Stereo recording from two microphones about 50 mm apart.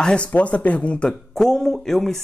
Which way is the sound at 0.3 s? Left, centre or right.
Left.